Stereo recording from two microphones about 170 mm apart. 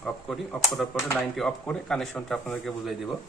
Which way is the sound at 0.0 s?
5° left (ahead or behind).